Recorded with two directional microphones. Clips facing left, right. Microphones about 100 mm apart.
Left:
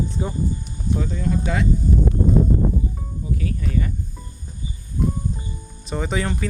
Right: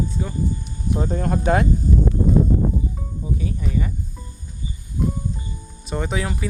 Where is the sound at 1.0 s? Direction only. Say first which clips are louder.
Right 2 dB; 45° right (ahead or behind).